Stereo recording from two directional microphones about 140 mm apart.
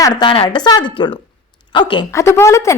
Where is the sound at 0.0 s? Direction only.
30° left (ahead or behind).